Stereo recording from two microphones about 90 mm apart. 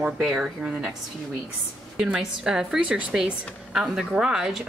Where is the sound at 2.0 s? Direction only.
10° right (ahead or behind).